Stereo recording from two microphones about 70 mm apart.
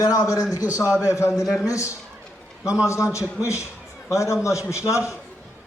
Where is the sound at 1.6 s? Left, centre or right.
Left.